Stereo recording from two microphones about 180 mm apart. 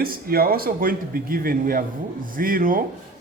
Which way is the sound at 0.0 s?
55° right (ahead or behind).